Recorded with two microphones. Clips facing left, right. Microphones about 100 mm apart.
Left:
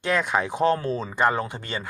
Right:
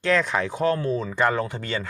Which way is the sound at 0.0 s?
15° left (ahead or behind).